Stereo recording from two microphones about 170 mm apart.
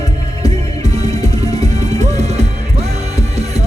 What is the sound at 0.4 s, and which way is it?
Music, 40° right (ahead or behind).